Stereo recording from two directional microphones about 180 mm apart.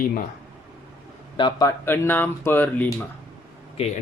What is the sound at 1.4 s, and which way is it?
Speech, 20° left (ahead or behind).